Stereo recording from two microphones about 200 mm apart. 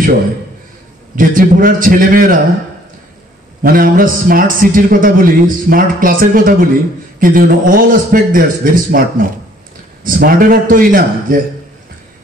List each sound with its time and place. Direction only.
1.1 s a man's voice: 45° right (ahead or behind)
3.6 s a man's voice: 45° right (ahead or behind)